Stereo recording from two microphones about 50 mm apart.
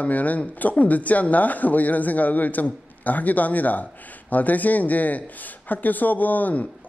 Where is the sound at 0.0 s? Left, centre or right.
Left.